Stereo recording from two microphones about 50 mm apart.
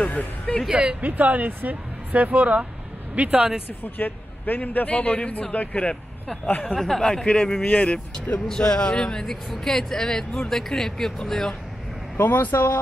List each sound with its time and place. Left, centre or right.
0.0 s a man's voice: left
0.7 s speech: right
3.8 s a man's voice: left
6.7 s a man's voice: centre
12.2 s speech: left